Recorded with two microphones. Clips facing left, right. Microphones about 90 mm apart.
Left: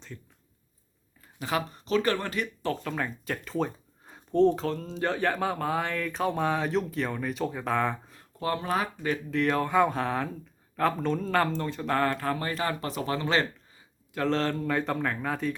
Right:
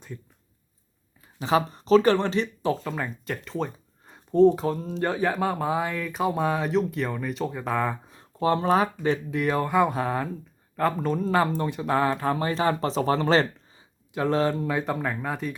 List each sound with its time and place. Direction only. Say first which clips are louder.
1.4 s speech: right 7 dB; 25° right (ahead or behind)
2.8 s speech: right 1 dB; 5° right (ahead or behind)
8.0 s speech: right 7 dB; 20° right (ahead or behind)
9.3 s speech: left 2 dB; 5° right (ahead or behind); by 13.5 s 35° right (ahead or behind)
13.7 s speech: right 3 dB; 15° right (ahead or behind)